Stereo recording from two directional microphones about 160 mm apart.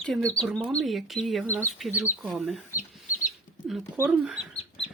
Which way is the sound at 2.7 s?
55° left (ahead or behind).